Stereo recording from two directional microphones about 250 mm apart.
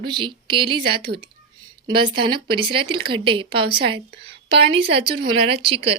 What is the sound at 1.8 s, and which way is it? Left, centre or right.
A woman's voice, centre.